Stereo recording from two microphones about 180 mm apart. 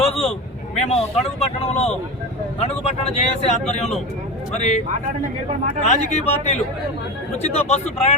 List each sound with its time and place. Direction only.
0.0 s vehicle: 35° left (ahead or behind)
0.8 s speech: 35° left (ahead or behind)
5.8 s speech: 40° left (ahead or behind)